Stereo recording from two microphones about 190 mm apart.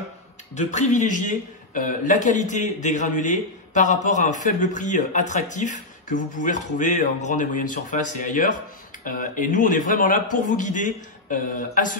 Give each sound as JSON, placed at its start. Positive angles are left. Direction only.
{"t": 0.6, "sound": "a man's voice", "side_deg": 40}